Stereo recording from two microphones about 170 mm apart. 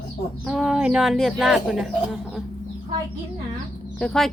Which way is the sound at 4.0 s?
5° left (ahead or behind).